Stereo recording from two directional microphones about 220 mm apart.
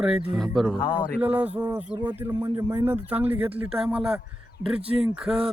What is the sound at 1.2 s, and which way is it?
Speech, 5° right (ahead or behind).